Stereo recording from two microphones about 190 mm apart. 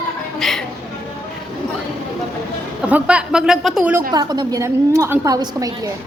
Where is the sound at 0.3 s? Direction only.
Centre (ahead or behind).